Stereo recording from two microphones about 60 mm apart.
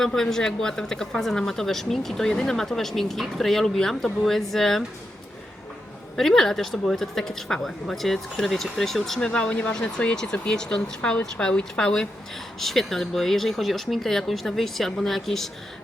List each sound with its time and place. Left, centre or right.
0.0 s speech: centre
6.1 s speech: centre